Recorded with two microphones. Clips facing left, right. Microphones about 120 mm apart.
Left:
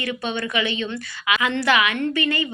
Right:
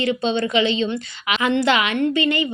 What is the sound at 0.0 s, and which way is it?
A woman's voice, 25° right (ahead or behind).